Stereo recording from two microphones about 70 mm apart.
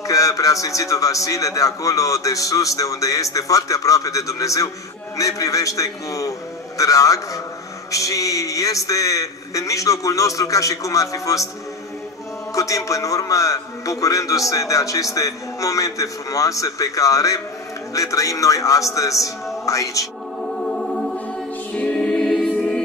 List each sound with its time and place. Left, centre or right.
0.0 s a man's voice: left
12.5 s a man's voice: left
20.7 s music: centre
21.7 s choir: centre